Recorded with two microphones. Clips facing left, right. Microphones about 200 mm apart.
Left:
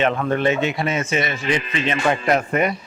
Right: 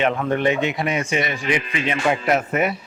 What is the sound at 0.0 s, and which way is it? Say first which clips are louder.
Speech: left 1 dB; 15° right (ahead or behind).